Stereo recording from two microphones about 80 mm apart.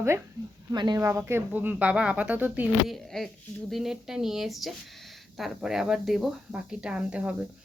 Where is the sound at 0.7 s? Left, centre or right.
Right.